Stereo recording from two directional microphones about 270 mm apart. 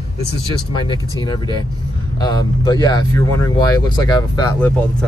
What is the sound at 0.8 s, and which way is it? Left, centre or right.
Speech, centre.